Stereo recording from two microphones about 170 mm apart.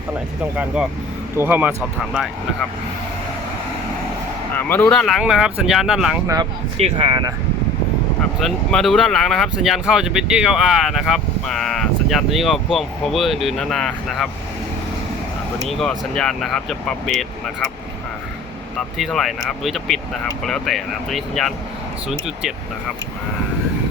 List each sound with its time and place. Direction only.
0.5 s speech: 5° right (ahead or behind)
4.5 s speech: 10° left (ahead or behind)
6.2 s speech: 20° right (ahead or behind)
8.4 s speech: centre (ahead or behind)
15.6 s speech: centre (ahead or behind)
18.9 s speech: centre (ahead or behind)